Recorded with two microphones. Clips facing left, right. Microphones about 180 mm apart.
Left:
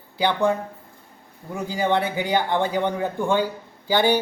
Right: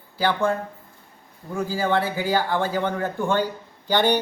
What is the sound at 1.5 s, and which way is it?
A man's voice, 20° left (ahead or behind).